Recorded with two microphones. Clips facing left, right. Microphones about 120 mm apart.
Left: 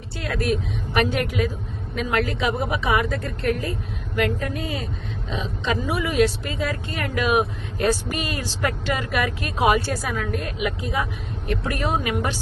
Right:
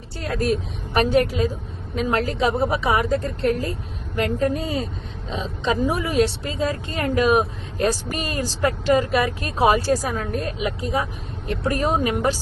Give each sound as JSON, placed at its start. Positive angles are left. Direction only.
{"t": 0.2, "sound": "speech", "side_deg": -35}